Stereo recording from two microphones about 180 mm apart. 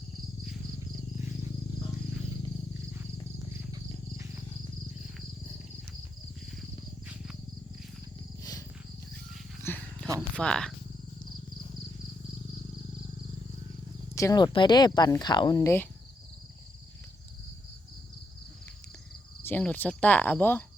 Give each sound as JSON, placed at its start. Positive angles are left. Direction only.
{"t": 8.4, "sound": "wild animals", "side_deg": 20}
{"t": 9.6, "sound": "roaring cats", "side_deg": 10}
{"t": 10.3, "sound": "speech", "side_deg": 5}
{"t": 14.2, "sound": "speech", "side_deg": 20}
{"t": 19.4, "sound": "cricket", "side_deg": 10}